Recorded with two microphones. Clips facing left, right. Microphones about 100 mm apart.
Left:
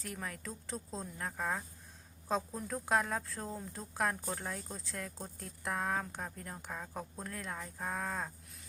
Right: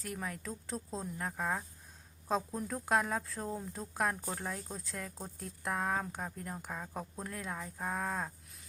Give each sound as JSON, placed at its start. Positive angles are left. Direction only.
{"t": 0.0, "sound": "a woman's voice", "side_deg": 0}